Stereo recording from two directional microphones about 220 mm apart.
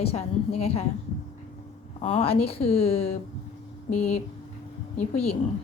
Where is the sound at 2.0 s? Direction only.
25° left (ahead or behind).